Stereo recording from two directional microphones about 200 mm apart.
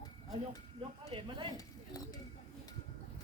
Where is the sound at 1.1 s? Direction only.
25° right (ahead or behind).